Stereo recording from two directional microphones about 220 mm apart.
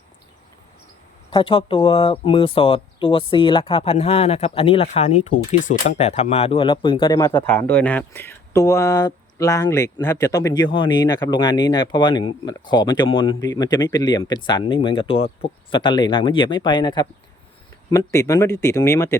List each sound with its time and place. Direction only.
1.3 s speech: 25° left (ahead or behind)